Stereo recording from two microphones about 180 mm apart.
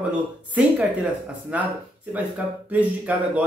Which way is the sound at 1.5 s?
10° right (ahead or behind).